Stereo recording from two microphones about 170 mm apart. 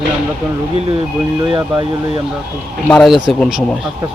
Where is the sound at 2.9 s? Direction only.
Centre (ahead or behind).